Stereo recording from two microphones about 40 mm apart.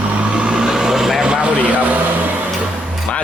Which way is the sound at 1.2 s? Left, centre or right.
Right.